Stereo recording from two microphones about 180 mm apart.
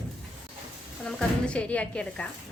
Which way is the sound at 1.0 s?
5° left (ahead or behind).